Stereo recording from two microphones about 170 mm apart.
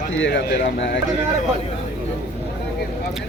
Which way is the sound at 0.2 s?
85° left.